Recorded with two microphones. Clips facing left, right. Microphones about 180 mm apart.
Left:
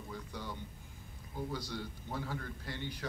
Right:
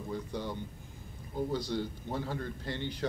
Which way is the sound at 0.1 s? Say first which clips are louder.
Right 8 dB; 25° right (ahead or behind).